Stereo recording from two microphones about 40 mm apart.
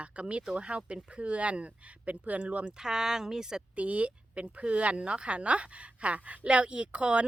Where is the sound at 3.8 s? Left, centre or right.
Right.